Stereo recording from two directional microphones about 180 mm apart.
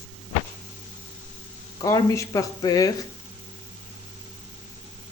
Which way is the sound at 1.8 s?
15° left (ahead or behind).